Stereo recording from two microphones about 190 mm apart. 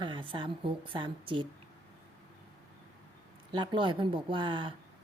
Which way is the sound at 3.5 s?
25° right (ahead or behind).